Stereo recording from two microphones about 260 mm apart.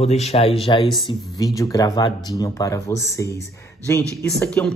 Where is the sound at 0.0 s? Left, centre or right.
Left.